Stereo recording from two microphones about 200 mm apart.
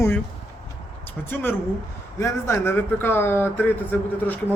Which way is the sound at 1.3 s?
10° left (ahead or behind).